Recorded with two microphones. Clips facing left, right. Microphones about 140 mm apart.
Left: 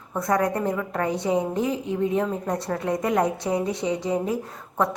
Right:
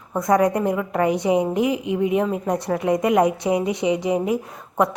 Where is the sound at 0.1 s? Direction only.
20° right (ahead or behind).